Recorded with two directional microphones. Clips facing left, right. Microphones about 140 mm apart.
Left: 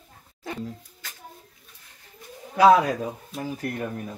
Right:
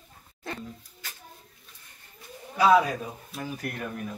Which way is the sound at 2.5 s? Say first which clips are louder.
Left 4 dB; 90° left.